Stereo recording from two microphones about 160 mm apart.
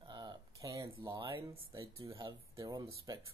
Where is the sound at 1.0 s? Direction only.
20° right (ahead or behind).